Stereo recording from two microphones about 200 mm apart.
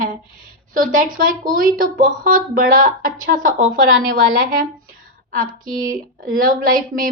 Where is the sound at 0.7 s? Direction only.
45° right (ahead or behind).